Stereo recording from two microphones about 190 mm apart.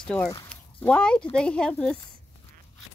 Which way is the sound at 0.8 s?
5° left (ahead or behind).